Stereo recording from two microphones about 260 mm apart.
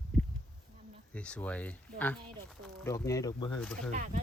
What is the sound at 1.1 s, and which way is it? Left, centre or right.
Speech, centre.